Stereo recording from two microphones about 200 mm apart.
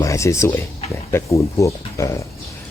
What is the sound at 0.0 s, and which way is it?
Speech, 15° left (ahead or behind).